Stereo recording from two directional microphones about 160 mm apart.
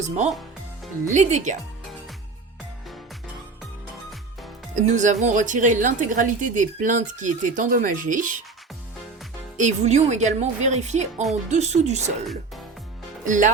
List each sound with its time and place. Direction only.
0.0 s a woman's voice: 45° right (ahead or behind)
4.7 s a woman's voice: 50° right (ahead or behind)
9.6 s a woman's voice: 45° right (ahead or behind)
13.2 s speech: 50° right (ahead or behind)